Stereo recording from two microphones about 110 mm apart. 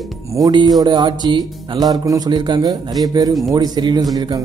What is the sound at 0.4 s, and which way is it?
Speech, 45° right (ahead or behind).